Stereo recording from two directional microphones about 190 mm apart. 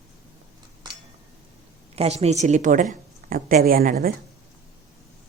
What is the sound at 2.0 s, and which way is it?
A woman's voice, 35° right (ahead or behind).